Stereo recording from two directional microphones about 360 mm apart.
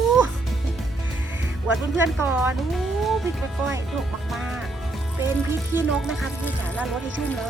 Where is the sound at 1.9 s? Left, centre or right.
Centre.